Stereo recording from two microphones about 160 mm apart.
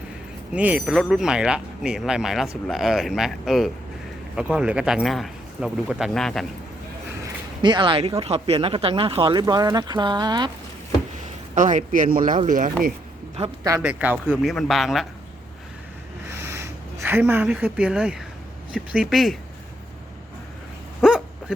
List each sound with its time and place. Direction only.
0.5 s speech: 10° right (ahead or behind)
7.6 s speech: 30° right (ahead or behind)
11.5 s speech: 50° right (ahead or behind)
13.8 s speech: 10° right (ahead or behind)
16.3 s a woman's voice: 15° right (ahead or behind); by 19.4 s centre (ahead or behind)
21.0 s dog: 5° right (ahead or behind)